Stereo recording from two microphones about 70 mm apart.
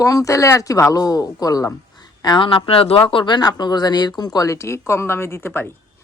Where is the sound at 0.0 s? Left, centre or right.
Left.